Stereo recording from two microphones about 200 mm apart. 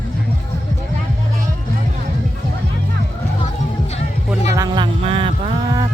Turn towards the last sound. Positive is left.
turn(degrees=-25)  # may be behind; listen again after turning